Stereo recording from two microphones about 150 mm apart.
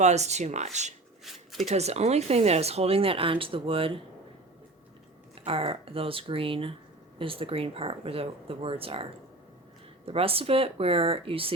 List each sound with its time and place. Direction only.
0.0 s speech: 50° right (ahead or behind)
1.2 s a sound: centre (ahead or behind)
1.7 s speech: 45° right (ahead or behind)
5.3 s speech: 40° right (ahead or behind)
10.1 s speech: 40° right (ahead or behind)